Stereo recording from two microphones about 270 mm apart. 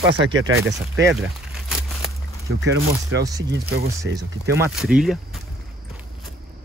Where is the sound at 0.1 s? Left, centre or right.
Right.